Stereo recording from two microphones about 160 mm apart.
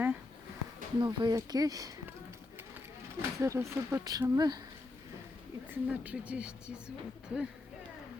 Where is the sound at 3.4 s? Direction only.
15° right (ahead or behind).